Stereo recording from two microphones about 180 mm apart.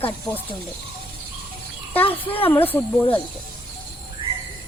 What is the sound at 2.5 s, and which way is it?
Speech, 10° left (ahead or behind).